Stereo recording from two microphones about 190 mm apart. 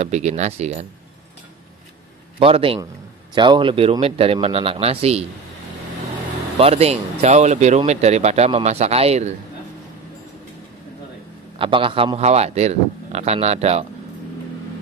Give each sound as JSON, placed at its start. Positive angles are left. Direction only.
{"t": 0.0, "sound": "speech", "side_deg": -35}
{"t": 2.3, "sound": "speech", "side_deg": -30}
{"t": 6.6, "sound": "speech", "side_deg": -35}
{"t": 11.5, "sound": "speech", "side_deg": -25}